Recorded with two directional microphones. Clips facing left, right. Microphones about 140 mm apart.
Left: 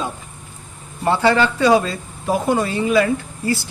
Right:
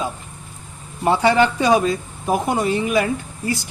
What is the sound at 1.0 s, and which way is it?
A man's voice, 15° right (ahead or behind).